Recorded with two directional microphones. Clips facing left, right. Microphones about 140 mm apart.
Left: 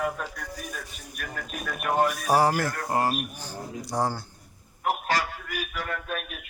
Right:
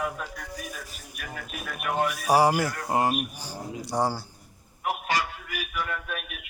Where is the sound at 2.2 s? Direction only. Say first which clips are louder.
Right 1 dB; 5° right (ahead or behind).